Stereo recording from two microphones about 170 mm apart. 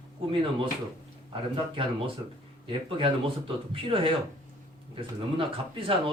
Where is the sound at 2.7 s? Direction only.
30° right (ahead or behind).